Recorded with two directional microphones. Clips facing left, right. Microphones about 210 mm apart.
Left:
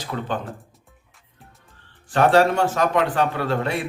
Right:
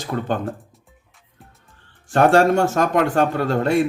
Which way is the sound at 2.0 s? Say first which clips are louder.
Right 2 dB; 45° right (ahead or behind).